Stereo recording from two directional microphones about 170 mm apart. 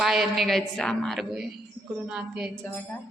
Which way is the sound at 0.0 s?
Centre (ahead or behind).